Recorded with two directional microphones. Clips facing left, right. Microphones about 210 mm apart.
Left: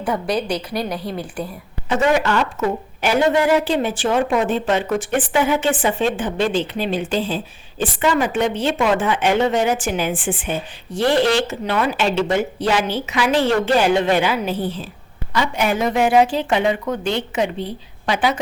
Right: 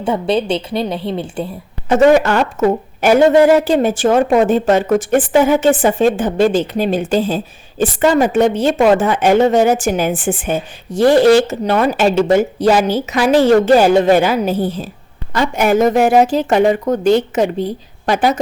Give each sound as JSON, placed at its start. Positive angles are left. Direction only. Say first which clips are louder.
{"t": 0.0, "sound": "a woman's voice", "louder": "right 5 dB", "side_deg": -25}
{"t": 1.9, "sound": "a woman's voice", "louder": "right 7 dB", "side_deg": -45}